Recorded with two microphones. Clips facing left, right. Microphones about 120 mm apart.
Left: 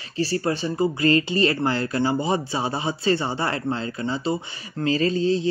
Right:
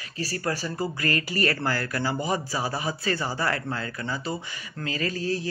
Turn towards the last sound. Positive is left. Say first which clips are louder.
# left 7 dB
turn(degrees=25)  # may be behind; listen again after turning